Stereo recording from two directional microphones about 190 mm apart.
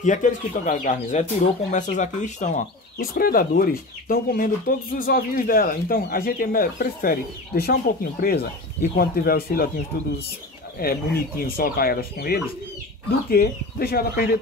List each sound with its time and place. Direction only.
0.0 s speech: 40° left (ahead or behind)
10.8 s speech: 50° left (ahead or behind)